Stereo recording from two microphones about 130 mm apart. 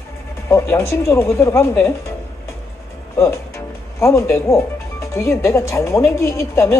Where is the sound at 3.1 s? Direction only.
20° left (ahead or behind).